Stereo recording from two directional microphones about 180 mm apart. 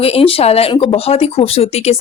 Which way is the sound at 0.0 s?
35° left (ahead or behind).